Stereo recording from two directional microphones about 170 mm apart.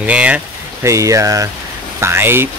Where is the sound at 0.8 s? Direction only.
20° right (ahead or behind).